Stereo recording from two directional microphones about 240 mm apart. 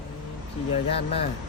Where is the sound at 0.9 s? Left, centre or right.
Left.